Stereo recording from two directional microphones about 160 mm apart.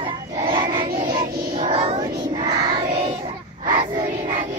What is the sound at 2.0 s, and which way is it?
Child singing, 25° right (ahead or behind).